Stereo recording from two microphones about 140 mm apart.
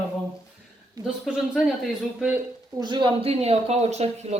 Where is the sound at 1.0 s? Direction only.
30° right (ahead or behind).